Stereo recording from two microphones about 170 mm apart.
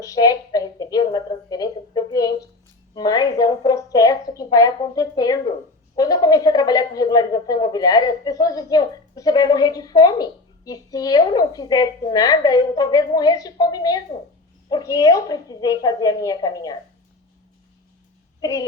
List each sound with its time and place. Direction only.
0.0 s a woman's voice: 20° left (ahead or behind)
18.3 s a child's voice: 20° left (ahead or behind)